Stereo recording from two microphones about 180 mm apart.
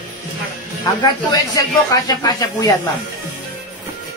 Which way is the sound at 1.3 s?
20° left (ahead or behind).